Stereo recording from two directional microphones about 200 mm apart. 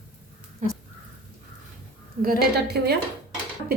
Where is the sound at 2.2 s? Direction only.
50° right (ahead or behind).